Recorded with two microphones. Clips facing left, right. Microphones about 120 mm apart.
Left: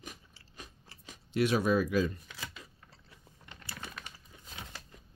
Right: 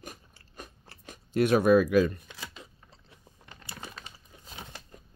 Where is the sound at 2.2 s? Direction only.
25° right (ahead or behind).